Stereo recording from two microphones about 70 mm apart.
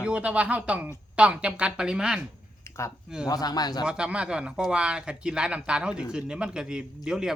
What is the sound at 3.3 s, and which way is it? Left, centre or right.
Speech, left.